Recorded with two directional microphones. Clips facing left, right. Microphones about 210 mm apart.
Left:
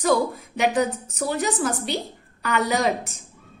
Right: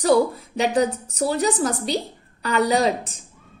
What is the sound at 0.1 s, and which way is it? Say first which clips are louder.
A woman's voice: right 4 dB; 35° right (ahead or behind).